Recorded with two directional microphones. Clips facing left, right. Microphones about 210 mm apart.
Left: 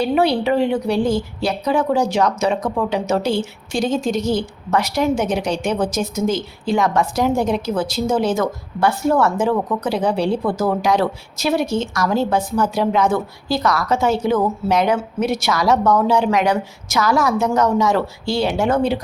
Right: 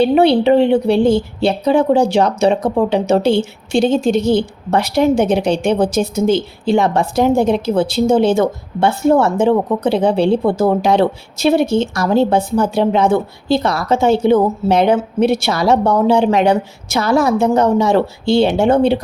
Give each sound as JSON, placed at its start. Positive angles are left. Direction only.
{"t": 0.0, "sound": "speech", "side_deg": -30}